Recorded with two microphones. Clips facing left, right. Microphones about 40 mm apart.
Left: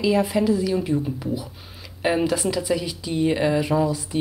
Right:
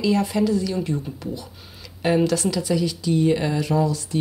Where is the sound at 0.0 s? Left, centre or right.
Centre.